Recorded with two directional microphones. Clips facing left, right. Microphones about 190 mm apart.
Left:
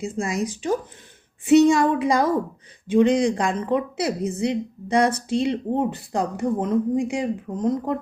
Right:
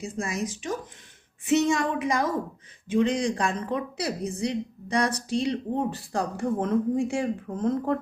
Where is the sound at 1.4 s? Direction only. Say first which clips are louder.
Left 8 dB; 35° left (ahead or behind); by 8.0 s 15° left (ahead or behind).